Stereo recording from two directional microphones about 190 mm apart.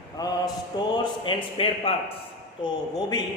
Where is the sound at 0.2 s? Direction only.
20° left (ahead or behind).